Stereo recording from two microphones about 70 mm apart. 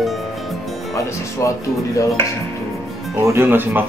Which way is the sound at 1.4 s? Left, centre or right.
Left.